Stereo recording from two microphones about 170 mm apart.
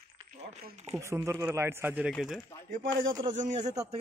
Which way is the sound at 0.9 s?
15° right (ahead or behind).